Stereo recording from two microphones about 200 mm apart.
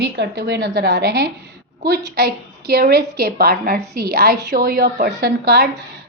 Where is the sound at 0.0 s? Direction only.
60° right (ahead or behind).